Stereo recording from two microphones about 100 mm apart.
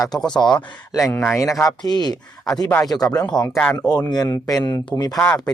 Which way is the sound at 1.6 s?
45° left (ahead or behind).